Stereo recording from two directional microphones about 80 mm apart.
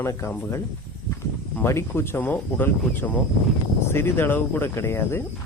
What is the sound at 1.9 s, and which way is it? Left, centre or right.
Speech, left.